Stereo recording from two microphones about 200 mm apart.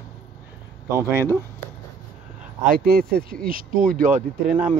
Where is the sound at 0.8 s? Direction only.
15° right (ahead or behind).